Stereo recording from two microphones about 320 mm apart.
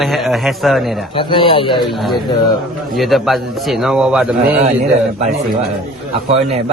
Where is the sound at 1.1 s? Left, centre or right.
Centre.